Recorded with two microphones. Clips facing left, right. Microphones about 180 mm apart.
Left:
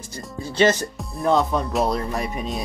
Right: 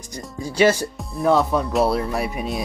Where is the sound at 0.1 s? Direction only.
10° right (ahead or behind).